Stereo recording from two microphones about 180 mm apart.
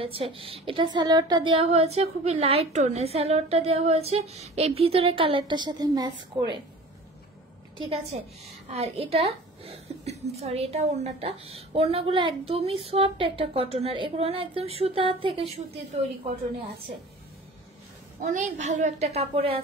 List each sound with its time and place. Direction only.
0.0 s a woman's voice: 30° right (ahead or behind)
8.1 s a woman's voice: 35° right (ahead or behind)
18.3 s a woman's voice: 40° right (ahead or behind)